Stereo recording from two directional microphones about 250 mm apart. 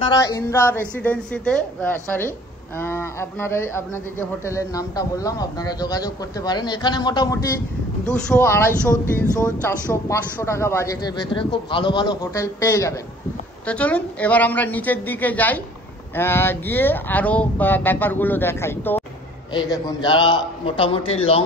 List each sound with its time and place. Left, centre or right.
0.0 s a man's voice: centre